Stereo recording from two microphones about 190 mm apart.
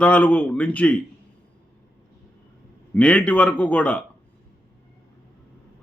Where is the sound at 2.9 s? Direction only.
5° left (ahead or behind).